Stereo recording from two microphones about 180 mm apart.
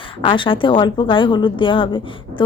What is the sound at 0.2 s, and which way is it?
Speech, 30° left (ahead or behind).